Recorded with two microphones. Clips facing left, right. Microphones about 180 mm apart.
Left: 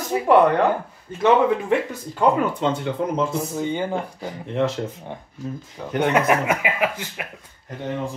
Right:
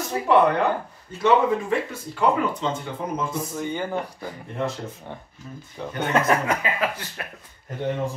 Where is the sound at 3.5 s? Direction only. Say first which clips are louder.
Left 3 dB; 20° left (ahead or behind).